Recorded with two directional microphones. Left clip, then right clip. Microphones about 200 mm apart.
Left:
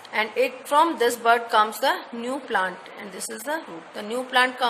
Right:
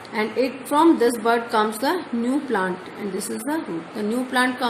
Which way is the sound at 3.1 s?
30° left (ahead or behind).